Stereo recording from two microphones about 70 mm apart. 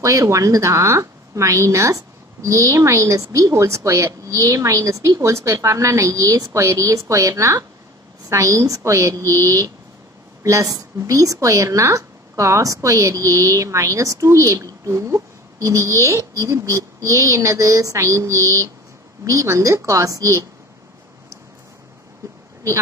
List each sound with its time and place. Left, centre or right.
0.0 s a woman's voice: right